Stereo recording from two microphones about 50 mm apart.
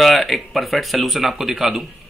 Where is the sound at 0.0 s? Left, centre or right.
Centre.